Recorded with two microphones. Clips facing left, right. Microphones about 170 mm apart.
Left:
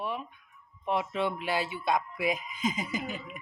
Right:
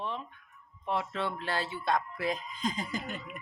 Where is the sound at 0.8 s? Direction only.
15° left (ahead or behind); by 3.4 s centre (ahead or behind).